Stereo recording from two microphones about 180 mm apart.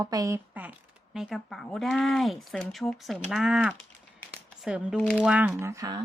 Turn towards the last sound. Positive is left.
turn(degrees=-20)  # may be behind; listen again after turning